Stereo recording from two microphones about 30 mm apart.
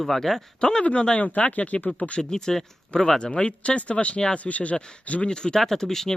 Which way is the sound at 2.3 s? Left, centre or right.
Centre.